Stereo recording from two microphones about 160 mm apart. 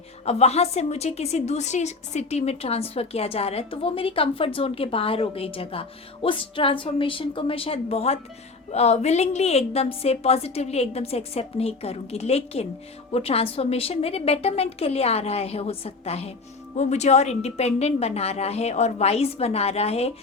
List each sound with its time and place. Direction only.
0.3 s a woman's voice: 40° left (ahead or behind)